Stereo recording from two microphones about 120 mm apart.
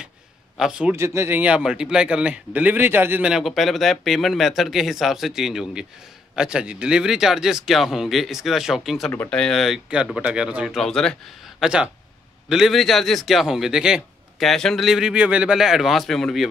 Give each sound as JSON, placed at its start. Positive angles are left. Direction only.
{"t": 0.6, "sound": "a man's voice", "side_deg": -5}
{"t": 0.9, "sound": "speech", "side_deg": -20}
{"t": 1.4, "sound": "a man's voice", "side_deg": -10}
{"t": 3.3, "sound": "a man's voice", "side_deg": -5}
{"t": 10.8, "sound": "a man's voice", "side_deg": 5}